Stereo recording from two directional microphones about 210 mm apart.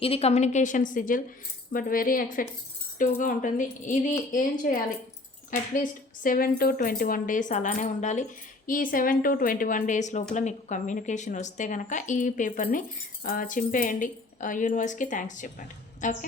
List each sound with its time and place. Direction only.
0.0 s speech: 30° left (ahead or behind)